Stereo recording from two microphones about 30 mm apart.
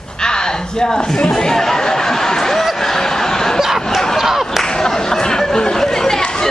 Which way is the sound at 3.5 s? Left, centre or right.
Centre.